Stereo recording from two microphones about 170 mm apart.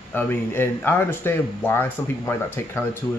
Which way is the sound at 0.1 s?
10° left (ahead or behind).